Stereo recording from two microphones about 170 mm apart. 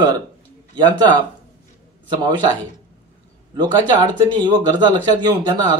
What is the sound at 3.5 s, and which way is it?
Speech, 25° right (ahead or behind).